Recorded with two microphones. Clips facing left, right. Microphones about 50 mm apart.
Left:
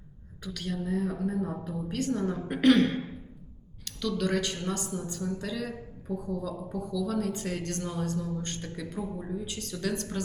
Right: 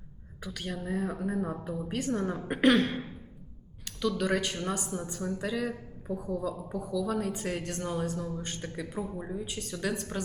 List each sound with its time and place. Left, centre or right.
0.4 s speech: centre